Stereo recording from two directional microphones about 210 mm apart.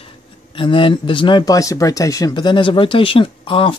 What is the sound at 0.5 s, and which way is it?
Speech, 25° left (ahead or behind).